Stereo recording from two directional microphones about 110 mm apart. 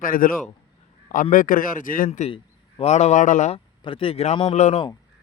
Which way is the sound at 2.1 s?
80° left.